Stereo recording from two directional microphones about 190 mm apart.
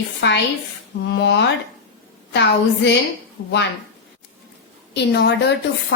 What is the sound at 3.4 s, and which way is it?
Speech, 75° left (ahead or behind).